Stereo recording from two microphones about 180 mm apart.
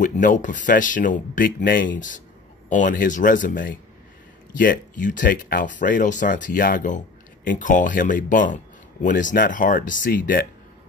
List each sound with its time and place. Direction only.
0.0 s speech: 45° left (ahead or behind)
4.6 s speech: 50° left (ahead or behind)